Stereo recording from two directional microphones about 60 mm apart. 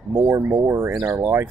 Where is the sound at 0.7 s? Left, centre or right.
Right.